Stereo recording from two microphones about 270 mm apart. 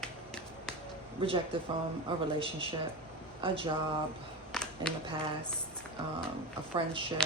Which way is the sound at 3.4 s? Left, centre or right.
Centre.